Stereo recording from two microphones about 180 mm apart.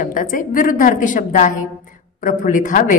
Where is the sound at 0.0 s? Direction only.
50° left (ahead or behind).